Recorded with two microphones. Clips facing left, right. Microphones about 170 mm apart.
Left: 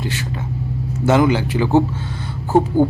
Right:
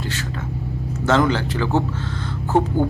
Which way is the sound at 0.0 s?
15° left (ahead or behind).